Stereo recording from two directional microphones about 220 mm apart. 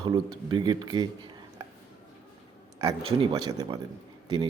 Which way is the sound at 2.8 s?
20° right (ahead or behind).